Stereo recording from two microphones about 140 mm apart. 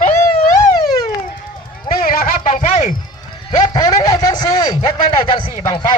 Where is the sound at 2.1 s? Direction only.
90° left.